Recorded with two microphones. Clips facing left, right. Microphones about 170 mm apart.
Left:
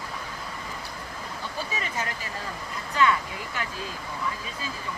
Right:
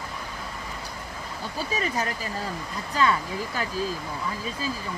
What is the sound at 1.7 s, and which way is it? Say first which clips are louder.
Speech: right 8 dB; 35° right (ahead or behind).